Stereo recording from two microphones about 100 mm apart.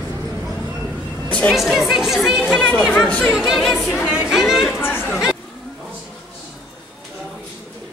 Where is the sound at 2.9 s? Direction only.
10° left (ahead or behind).